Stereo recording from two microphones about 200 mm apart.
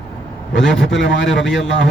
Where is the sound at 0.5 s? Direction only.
65° left (ahead or behind).